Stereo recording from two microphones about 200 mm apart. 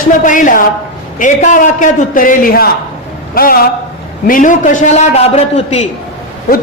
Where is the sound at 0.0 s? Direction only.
40° left (ahead or behind).